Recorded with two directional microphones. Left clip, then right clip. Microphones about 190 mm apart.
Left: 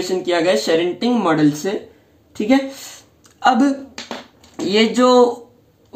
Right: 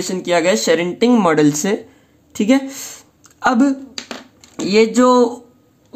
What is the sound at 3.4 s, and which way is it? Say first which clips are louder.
Speech: left 1 dB; 30° right (ahead or behind).